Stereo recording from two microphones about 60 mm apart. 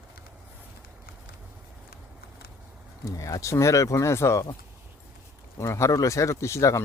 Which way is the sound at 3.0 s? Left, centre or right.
Left.